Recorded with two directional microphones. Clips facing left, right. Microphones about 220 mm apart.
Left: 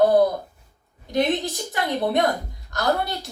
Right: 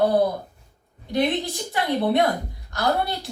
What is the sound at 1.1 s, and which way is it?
Speech, 45° left (ahead or behind).